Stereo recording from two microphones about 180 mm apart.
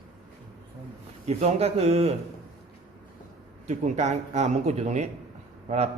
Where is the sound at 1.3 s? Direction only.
35° right (ahead or behind).